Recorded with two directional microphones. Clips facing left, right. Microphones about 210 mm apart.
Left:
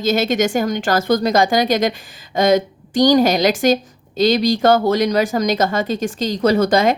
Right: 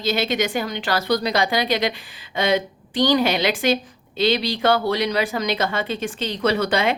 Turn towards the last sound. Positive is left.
turn(degrees=40)  # may be behind; listen again after turning